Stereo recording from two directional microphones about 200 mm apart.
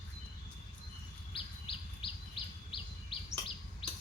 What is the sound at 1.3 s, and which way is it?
Bird, 25° left (ahead or behind).